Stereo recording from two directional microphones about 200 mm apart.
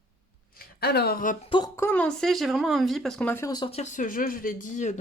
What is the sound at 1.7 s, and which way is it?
Speech, 10° left (ahead or behind).